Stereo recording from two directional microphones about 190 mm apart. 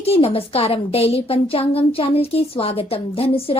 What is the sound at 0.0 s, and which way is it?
A woman's voice, 30° left (ahead or behind).